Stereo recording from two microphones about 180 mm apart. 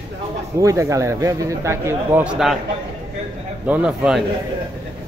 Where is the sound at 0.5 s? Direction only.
15° right (ahead or behind).